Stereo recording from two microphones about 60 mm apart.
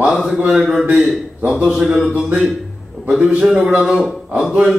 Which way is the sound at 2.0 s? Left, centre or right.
Centre.